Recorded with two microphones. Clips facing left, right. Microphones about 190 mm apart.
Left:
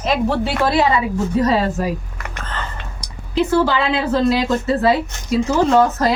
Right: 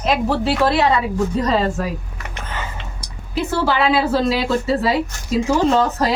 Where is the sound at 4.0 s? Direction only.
10° right (ahead or behind).